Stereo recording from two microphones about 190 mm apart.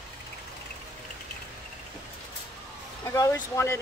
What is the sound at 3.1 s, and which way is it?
Speech, 20° left (ahead or behind).